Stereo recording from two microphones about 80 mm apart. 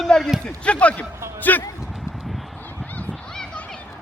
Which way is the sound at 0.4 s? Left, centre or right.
Centre.